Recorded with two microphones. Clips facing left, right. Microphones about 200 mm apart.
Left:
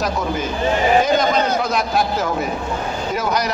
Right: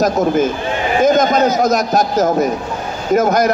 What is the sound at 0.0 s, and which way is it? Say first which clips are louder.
A man's voice: right 8 dB; 45° right (ahead or behind).